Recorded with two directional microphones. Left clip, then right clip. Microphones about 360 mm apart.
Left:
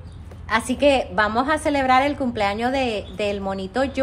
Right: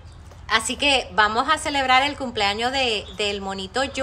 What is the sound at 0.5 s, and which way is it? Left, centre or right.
A woman's voice, centre.